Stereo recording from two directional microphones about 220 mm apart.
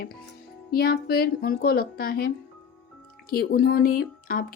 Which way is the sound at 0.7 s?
45° left (ahead or behind).